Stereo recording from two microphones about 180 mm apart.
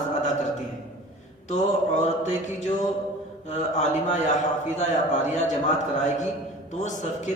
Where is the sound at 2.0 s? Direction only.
40° left (ahead or behind).